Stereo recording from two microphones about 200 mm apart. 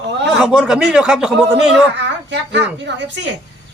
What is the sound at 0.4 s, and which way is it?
A man's voice, centre (ahead or behind).